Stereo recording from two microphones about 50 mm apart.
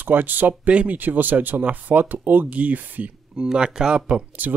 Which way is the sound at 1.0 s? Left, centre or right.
Right.